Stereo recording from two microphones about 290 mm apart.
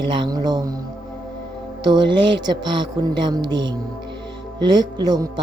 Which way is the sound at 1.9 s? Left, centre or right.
Centre.